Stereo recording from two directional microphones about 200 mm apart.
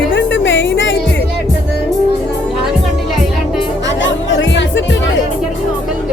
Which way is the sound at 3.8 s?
65° left (ahead or behind).